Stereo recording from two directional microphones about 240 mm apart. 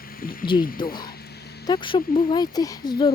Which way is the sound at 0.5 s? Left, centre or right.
Left.